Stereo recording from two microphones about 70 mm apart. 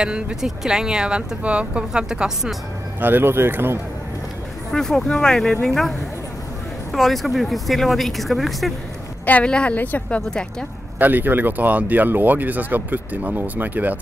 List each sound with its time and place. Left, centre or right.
0.0 s speech: centre
3.0 s speech: right
4.7 s speech: centre
9.2 s a woman's voice: centre
11.0 s speech: right